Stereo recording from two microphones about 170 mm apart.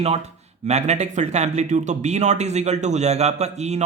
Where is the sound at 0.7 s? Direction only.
40° right (ahead or behind).